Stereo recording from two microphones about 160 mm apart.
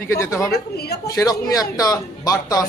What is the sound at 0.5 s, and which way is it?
Speech, 80° left.